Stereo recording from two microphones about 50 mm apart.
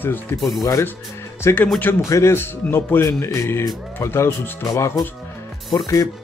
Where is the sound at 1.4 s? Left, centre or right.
Left.